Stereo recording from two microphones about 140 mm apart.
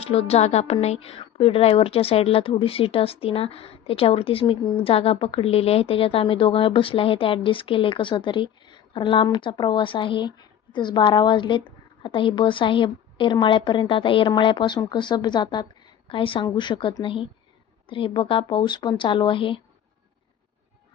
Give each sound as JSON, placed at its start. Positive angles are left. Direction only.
{"t": 0.0, "sound": "a woman's voice", "side_deg": 45}